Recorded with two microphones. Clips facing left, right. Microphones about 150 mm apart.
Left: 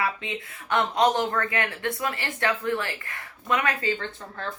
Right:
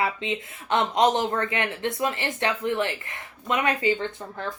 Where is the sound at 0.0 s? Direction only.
20° right (ahead or behind).